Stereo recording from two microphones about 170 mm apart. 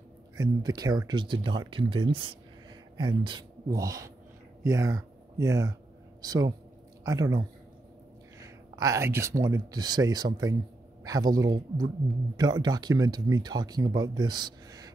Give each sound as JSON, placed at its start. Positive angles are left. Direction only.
{"t": 0.4, "sound": "speech", "side_deg": -20}